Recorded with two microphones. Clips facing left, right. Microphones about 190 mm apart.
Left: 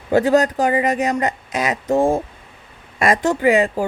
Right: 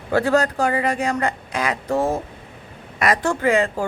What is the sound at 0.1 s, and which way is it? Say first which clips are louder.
Speech: left 3 dB; 20° left (ahead or behind).